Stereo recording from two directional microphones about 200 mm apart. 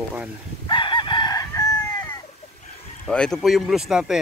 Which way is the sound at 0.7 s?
25° left (ahead or behind).